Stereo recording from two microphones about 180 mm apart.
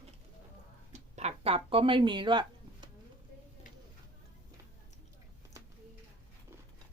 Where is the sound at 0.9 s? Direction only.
40° right (ahead or behind).